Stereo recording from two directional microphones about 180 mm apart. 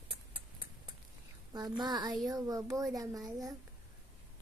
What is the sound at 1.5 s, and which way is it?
A woman's voice, 20° right (ahead or behind).